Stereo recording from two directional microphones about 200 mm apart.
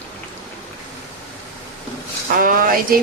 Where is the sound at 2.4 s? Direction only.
45° right (ahead or behind).